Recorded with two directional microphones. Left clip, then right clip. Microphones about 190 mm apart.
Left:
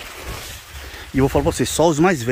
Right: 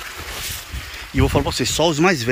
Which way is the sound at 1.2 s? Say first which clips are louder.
Left 2 dB; 25° left (ahead or behind).